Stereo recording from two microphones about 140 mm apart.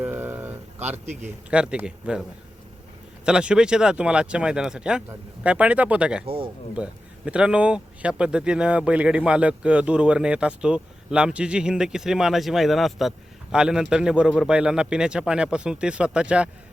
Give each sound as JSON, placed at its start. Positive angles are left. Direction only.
{"t": 0.0, "sound": "a sound", "side_deg": -15}
{"t": 1.2, "sound": "speech", "side_deg": -10}
{"t": 3.2, "sound": "speech", "side_deg": -5}
{"t": 6.2, "sound": "speech", "side_deg": -40}
{"t": 6.7, "sound": "speech", "side_deg": -10}